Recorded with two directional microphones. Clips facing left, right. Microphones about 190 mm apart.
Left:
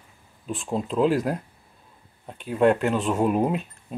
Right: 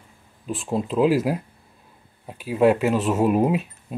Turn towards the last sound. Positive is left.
turn(degrees=-5)  # may be behind; listen again after turning